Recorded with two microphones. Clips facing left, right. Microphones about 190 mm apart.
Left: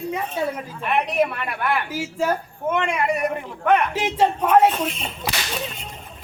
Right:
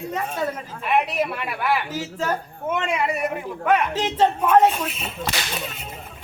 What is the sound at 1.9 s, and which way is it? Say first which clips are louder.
Speech: left 3 dB; 10° left (ahead or behind).